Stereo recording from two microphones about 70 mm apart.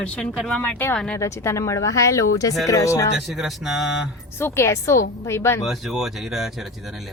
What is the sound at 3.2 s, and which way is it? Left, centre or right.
Speech, centre.